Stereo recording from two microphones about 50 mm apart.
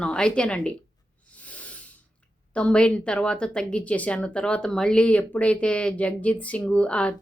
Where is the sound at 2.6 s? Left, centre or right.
Centre.